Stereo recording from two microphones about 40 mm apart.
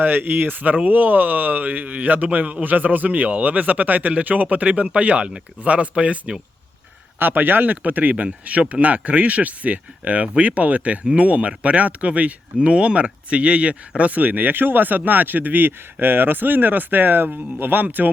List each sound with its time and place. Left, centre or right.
0.0 s speech: right
7.2 s speech: right
14.2 s speech: right